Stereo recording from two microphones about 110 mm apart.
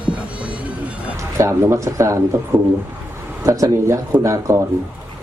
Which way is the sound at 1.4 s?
25° right (ahead or behind).